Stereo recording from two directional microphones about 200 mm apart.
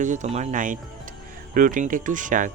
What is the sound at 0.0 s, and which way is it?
Speech, 40° right (ahead or behind).